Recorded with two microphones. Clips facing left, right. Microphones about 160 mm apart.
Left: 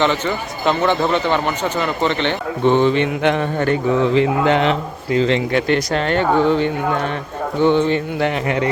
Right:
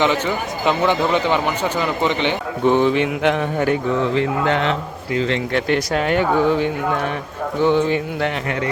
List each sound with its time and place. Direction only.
0.0 s speech: 10° right (ahead or behind)
4.1 s mantra: 20° left (ahead or behind)
5.1 s speech: 30° left (ahead or behind)
5.5 s speech: centre (ahead or behind)